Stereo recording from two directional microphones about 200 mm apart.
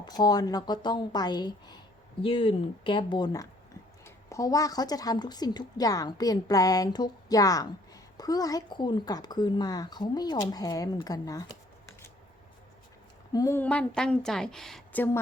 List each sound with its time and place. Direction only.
0.0 s speech: 20° left (ahead or behind)
13.3 s a woman's voice: 15° left (ahead or behind)